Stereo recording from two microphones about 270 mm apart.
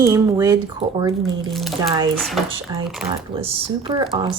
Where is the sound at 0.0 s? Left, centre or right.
Centre.